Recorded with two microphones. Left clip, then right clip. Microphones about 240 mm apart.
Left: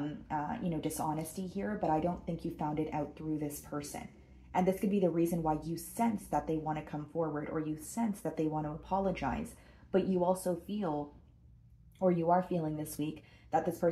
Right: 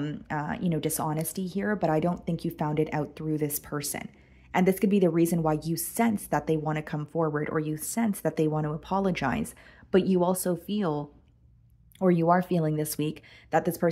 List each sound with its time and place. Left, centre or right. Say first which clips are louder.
0.0 s a woman's voice: right 4 dB; right
12.0 s a woman's voice: right 6 dB; right